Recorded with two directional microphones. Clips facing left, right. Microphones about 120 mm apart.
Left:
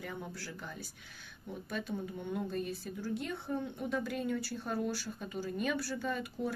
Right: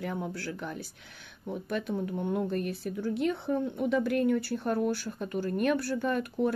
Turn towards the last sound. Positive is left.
turn(degrees=-60)  # may be behind; listen again after turning